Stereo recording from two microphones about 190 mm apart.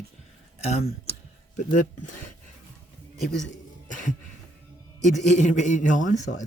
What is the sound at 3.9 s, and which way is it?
Cough, 40° left (ahead or behind).